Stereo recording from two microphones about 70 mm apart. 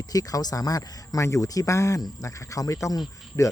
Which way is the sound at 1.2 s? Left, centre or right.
Left.